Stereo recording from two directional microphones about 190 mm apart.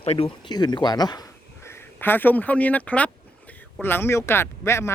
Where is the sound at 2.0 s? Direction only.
10° left (ahead or behind).